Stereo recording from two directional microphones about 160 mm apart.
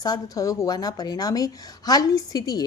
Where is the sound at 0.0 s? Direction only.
25° left (ahead or behind).